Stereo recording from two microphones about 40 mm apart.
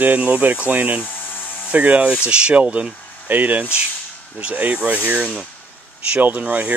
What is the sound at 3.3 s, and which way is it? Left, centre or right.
Speech, right.